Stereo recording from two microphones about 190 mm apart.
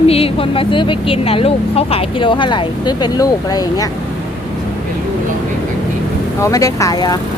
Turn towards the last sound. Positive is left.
turn(degrees=20)  # may be behind; listen again after turning